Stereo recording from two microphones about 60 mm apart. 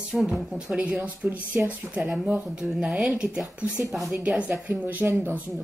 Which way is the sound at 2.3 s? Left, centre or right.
Centre.